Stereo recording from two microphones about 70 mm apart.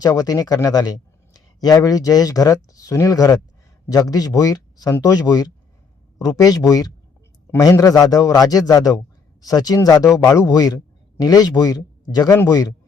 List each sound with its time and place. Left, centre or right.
0.0 s a man's voice: left